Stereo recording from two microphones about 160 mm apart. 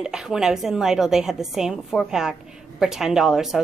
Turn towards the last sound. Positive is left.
turn(degrees=0)  # may be behind; listen again after turning